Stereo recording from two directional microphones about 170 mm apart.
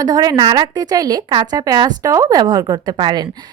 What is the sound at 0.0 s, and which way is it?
Speech, 20° right (ahead or behind).